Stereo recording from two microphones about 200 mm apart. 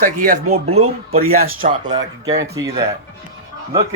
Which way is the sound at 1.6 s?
40° right (ahead or behind).